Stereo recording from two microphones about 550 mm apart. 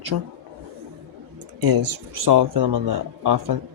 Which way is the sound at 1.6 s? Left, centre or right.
Right.